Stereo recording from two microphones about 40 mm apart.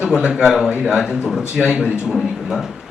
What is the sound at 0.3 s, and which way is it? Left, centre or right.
A man's voice, centre.